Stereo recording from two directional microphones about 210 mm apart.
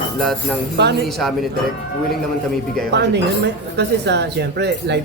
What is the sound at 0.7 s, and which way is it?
Speech, 50° right (ahead or behind).